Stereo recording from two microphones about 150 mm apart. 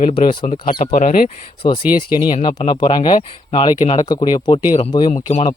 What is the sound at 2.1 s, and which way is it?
Speech, 30° left (ahead or behind).